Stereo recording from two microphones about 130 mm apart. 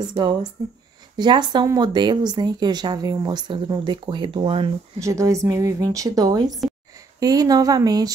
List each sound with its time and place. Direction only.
0.1 s a woman's voice: 40° right (ahead or behind)
5.0 s a woman's voice: 25° right (ahead or behind)